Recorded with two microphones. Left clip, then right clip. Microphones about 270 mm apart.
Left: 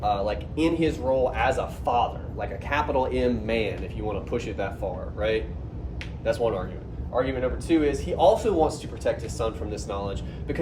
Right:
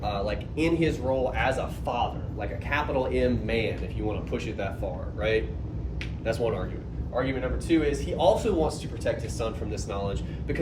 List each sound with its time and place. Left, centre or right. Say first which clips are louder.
0.0 s a man's voice: left 5 dB; centre